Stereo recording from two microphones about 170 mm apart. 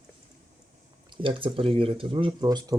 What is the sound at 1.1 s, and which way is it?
Speech, 30° right (ahead or behind).